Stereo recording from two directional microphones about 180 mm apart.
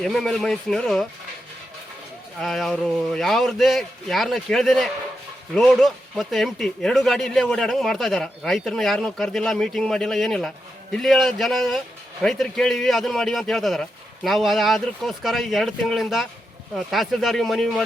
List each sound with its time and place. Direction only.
0.0 s speech: 5° left (ahead or behind)
2.4 s speech: centre (ahead or behind)